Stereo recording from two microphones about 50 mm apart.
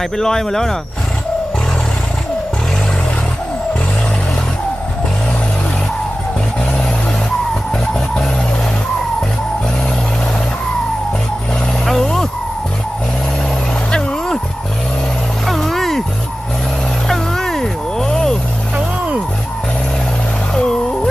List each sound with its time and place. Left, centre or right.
0.0 s speech: centre
11.9 s vehicle: centre
13.9 s vehicle: centre
15.4 s vehicle: centre
17.1 s vehicle: centre
20.5 s vehicle: centre